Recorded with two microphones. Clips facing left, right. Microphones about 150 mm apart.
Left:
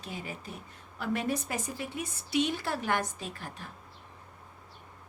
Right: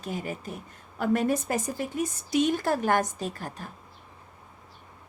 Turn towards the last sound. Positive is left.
turn(degrees=-40)  # may be behind; listen again after turning